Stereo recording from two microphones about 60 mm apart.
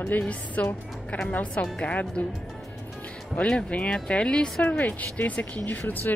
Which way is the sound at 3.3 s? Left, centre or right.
Left.